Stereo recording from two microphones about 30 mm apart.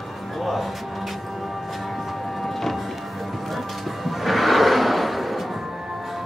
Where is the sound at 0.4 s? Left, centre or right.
Centre.